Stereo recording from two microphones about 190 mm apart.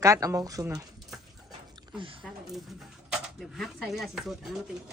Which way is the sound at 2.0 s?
25° right (ahead or behind).